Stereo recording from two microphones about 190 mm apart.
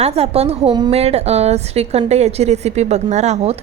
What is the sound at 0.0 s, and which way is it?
A woman's voice, 30° right (ahead or behind).